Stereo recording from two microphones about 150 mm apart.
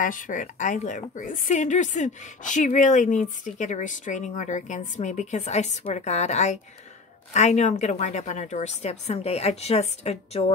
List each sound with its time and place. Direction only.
0.0 s a woman's voice: 65° left (ahead or behind); by 10.4 s 45° left (ahead or behind)